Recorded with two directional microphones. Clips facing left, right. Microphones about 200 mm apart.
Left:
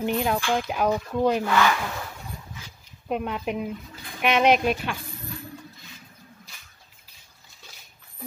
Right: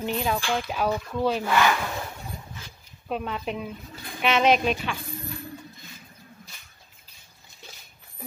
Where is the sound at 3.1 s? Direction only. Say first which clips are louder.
Left 2 dB; 10° left (ahead or behind).